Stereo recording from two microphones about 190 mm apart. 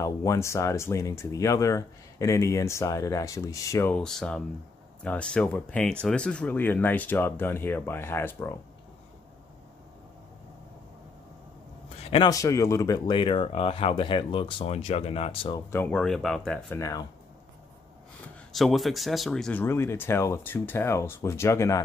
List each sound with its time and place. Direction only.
0.0 s speech: 15° left (ahead or behind)
12.0 s a sound: 30° left (ahead or behind)
12.3 s speech: 15° left (ahead or behind)
15.7 s speech: 10° left (ahead or behind)
18.5 s speech: centre (ahead or behind)